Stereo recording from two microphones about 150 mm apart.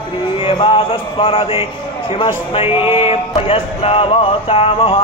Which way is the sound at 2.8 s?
15° right (ahead or behind).